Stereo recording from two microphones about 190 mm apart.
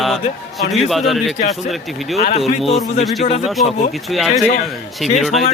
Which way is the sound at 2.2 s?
35° left (ahead or behind).